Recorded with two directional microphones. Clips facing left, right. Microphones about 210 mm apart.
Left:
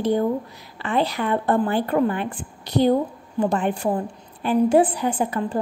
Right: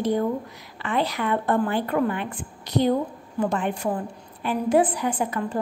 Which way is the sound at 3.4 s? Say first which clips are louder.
Left 3 dB; 30° left (ahead or behind).